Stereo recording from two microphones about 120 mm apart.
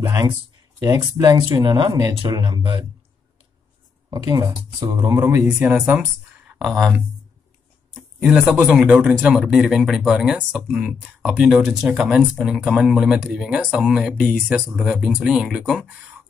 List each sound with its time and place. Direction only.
0.0 s speech: 25° right (ahead or behind)
2.3 s speech: 40° right (ahead or behind)
4.1 s speech: 30° right (ahead or behind)
5.5 s speech: 5° right (ahead or behind)
8.2 s speech: 5° right (ahead or behind)